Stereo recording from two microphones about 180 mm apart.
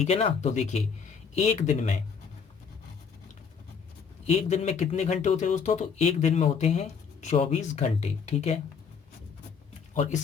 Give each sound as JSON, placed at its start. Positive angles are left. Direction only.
{"t": 0.0, "sound": "speech", "side_deg": 35}
{"t": 4.3, "sound": "speech", "side_deg": 40}
{"t": 9.9, "sound": "speech", "side_deg": 40}